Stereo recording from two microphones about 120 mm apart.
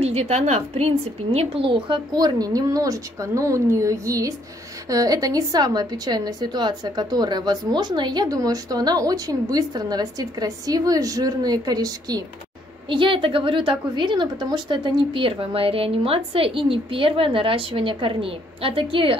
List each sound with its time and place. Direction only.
0.0 s a woman's voice: 65° right (ahead or behind); by 12.2 s 35° right (ahead or behind)
12.9 s a woman's voice: 45° right (ahead or behind)